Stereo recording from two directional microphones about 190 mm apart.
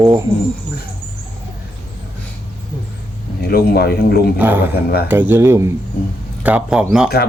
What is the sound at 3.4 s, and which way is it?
Speech, 55° left (ahead or behind).